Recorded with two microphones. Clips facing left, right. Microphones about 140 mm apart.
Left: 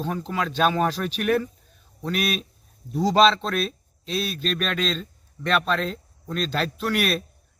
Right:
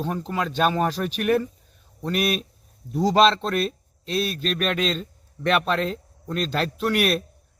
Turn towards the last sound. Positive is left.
turn(degrees=-10)  # may be behind; listen again after turning